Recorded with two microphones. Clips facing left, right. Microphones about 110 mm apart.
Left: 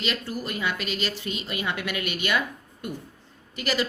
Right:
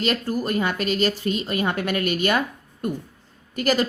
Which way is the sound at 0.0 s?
45° right (ahead or behind).